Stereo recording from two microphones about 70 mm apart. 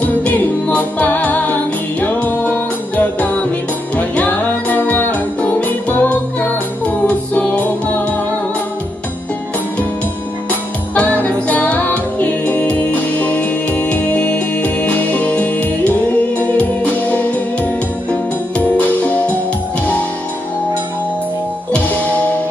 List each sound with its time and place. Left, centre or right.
0.0 s music: left
11.0 s music: left
18.6 s music: left
21.7 s music: centre